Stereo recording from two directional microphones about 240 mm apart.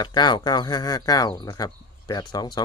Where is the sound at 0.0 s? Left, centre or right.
Centre.